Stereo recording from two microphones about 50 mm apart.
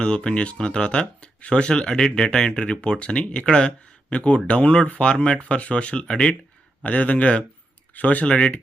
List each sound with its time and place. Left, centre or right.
0.0 s speech: centre